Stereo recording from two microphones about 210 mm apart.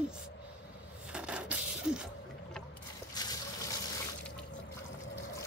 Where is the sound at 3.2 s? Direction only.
20° left (ahead or behind).